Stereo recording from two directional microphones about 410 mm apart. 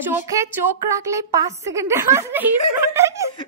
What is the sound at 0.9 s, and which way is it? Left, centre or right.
A woman's voice, centre.